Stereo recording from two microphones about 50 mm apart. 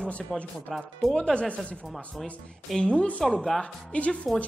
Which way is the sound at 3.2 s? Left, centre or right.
Centre.